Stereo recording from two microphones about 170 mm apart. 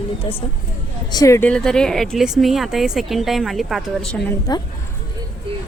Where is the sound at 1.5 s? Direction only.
5° left (ahead or behind).